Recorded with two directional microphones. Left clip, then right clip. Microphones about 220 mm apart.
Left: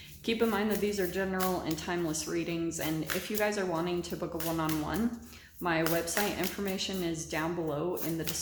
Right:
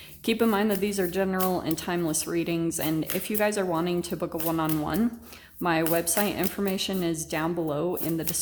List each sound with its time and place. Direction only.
0.3 s speech: 50° right (ahead or behind)